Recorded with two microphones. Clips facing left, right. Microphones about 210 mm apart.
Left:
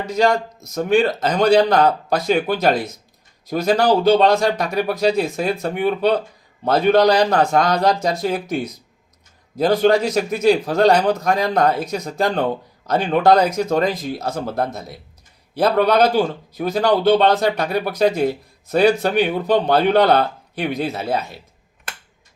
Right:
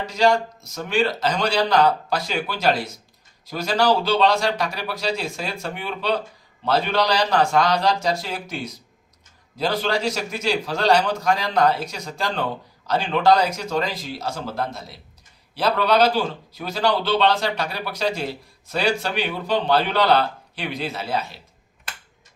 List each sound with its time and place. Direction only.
0.1 s speech: 50° left (ahead or behind)